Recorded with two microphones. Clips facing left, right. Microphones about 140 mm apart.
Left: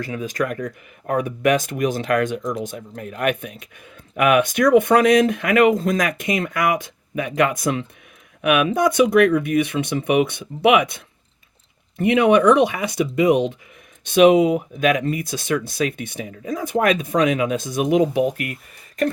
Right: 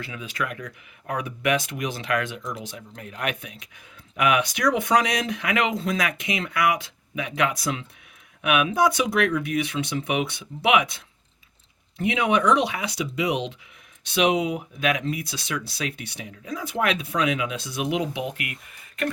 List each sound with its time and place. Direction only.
0.0 s speech: 45° left (ahead or behind)